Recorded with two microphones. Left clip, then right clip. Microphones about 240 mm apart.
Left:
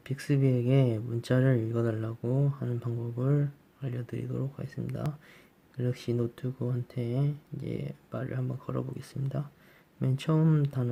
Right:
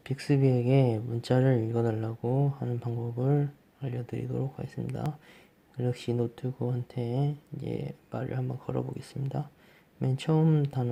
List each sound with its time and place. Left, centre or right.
0.0 s speech: centre